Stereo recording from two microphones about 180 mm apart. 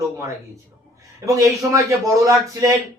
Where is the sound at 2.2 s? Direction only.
20° right (ahead or behind).